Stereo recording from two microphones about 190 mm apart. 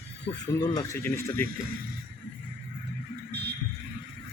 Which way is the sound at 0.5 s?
20° left (ahead or behind).